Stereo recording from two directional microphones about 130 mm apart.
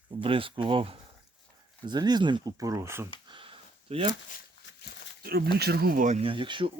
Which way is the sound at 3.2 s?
40° right (ahead or behind).